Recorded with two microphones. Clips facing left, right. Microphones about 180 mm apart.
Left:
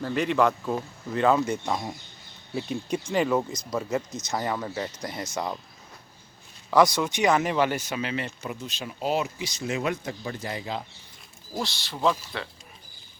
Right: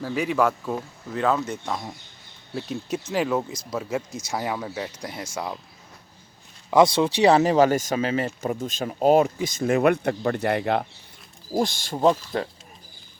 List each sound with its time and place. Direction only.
0.0 s speech: 5° right (ahead or behind)
6.7 s speech: 25° right (ahead or behind); by 10.8 s 65° right (ahead or behind)
11.6 s speech: 50° right (ahead or behind)